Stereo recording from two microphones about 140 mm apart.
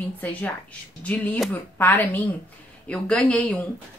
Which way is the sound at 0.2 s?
10° left (ahead or behind).